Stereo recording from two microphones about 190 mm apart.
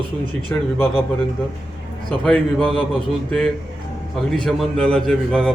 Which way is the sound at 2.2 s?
5° left (ahead or behind).